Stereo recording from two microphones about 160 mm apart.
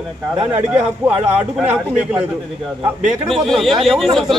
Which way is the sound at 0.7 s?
10° right (ahead or behind).